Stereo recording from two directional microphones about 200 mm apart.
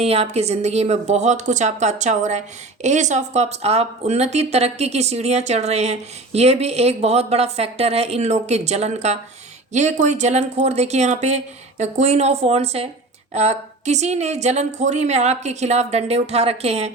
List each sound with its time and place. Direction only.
0.0 s speech: 30° right (ahead or behind)